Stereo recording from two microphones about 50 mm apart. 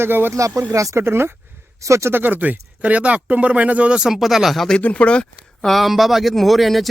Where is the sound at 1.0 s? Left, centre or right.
Right.